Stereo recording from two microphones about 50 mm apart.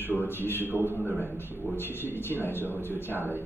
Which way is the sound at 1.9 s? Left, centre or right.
Left.